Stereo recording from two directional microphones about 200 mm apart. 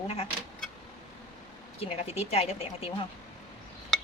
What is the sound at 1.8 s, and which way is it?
Speech, 30° left (ahead or behind).